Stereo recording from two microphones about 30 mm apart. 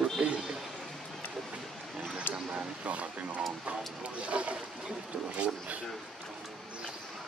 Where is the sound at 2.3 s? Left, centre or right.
Left.